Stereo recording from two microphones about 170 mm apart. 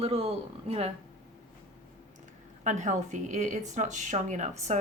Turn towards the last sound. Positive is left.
turn(degrees=-40)  # may be behind; listen again after turning